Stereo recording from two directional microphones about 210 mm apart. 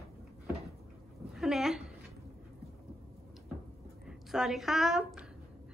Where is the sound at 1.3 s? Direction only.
Centre (ahead or behind).